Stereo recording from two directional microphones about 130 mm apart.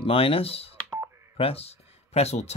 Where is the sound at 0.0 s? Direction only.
45° left (ahead or behind).